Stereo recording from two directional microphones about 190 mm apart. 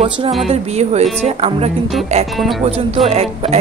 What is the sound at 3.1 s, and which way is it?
Speech, 30° right (ahead or behind).